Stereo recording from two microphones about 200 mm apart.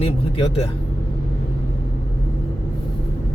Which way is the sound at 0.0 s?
25° left (ahead or behind).